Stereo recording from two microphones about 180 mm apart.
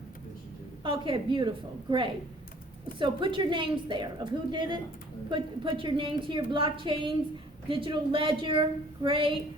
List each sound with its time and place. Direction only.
0.9 s a woman's voice: 25° right (ahead or behind)